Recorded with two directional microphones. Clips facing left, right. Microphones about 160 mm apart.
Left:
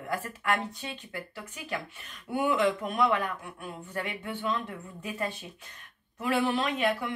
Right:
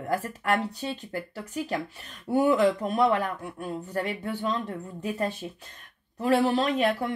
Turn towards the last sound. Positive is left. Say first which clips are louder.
# right 4 dB
turn(degrees=-40)  # may be behind; listen again after turning